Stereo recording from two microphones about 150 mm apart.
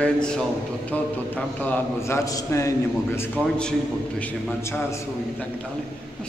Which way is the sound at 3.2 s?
10° left (ahead or behind).